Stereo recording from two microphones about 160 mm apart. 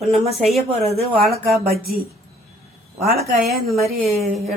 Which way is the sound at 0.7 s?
40° right (ahead or behind).